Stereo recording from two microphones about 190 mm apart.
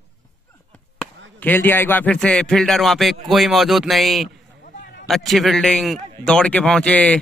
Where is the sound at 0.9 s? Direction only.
10° left (ahead or behind).